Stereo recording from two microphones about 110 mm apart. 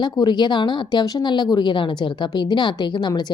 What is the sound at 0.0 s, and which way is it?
Speech, 40° left (ahead or behind).